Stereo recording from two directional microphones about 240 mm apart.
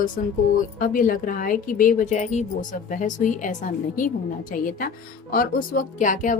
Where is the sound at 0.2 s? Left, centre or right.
Left.